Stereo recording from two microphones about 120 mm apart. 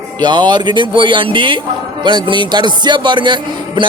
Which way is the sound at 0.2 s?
40° right (ahead or behind).